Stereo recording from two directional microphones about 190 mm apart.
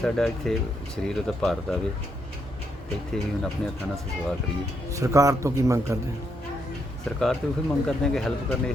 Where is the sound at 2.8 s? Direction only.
5° left (ahead or behind).